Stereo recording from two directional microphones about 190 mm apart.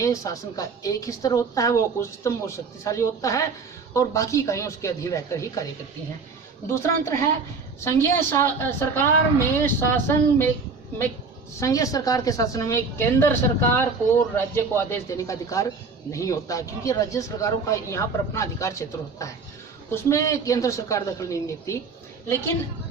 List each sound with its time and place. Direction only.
0.0 s a woman's voice: 15° left (ahead or behind)
6.7 s a woman's voice: 15° left (ahead or behind)
11.6 s a woman's voice: 15° left (ahead or behind)